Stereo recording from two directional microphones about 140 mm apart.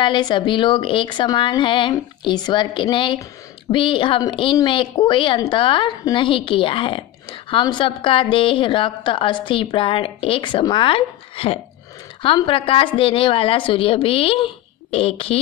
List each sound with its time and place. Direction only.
0.0 s a woman's voice: 35° left (ahead or behind)